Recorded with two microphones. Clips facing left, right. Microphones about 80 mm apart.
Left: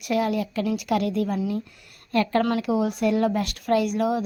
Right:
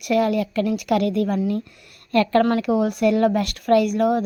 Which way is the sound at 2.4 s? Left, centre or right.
Right.